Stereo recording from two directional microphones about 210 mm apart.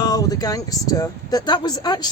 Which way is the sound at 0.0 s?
15° left (ahead or behind).